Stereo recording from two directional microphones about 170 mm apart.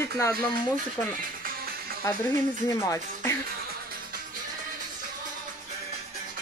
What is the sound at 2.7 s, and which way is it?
Speech, 15° left (ahead or behind).